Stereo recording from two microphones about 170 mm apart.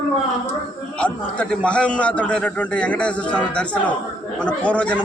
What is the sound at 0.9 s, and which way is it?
A man's voice, 5° left (ahead or behind).